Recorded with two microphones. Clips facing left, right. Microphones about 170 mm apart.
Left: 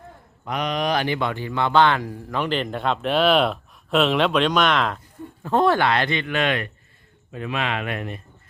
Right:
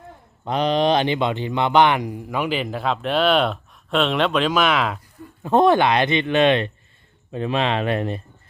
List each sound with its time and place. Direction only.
0.4 s speech: 30° right (ahead or behind); by 4.9 s 5° right (ahead or behind)
5.4 s speech: 20° right (ahead or behind)